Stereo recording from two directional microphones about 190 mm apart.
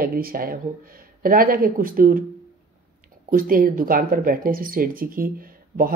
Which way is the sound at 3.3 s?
50° right (ahead or behind).